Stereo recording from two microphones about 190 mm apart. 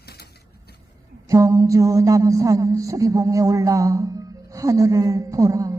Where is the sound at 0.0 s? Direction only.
55° left (ahead or behind).